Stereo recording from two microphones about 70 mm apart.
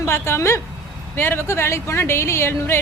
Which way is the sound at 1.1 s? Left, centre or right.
Left.